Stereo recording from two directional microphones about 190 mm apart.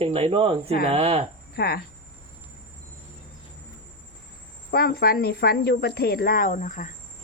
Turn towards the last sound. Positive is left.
turn(degrees=45)  # may be behind; listen again after turning